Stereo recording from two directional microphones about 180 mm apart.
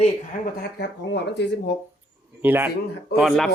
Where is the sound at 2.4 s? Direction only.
10° right (ahead or behind).